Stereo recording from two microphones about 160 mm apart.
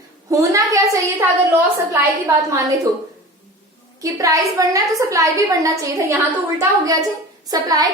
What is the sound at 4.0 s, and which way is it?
A woman's voice, 20° right (ahead or behind).